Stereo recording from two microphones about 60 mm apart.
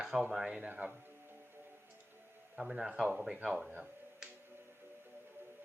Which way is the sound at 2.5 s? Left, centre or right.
Centre.